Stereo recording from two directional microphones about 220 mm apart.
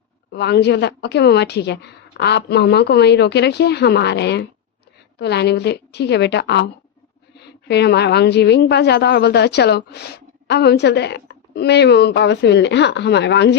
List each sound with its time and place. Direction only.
0.3 s a woman's voice: 50° left (ahead or behind)